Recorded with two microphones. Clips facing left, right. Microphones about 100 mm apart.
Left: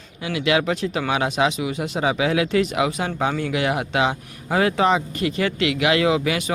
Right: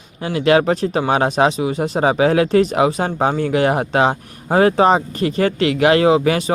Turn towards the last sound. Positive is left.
turn(degrees=-40)  # may be behind; listen again after turning